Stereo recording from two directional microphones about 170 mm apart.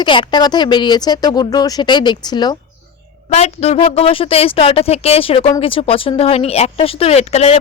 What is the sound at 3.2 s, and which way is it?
A woman's voice, 40° left (ahead or behind).